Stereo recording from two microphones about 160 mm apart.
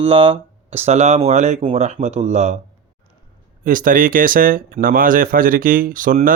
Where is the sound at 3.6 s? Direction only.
55° right (ahead or behind).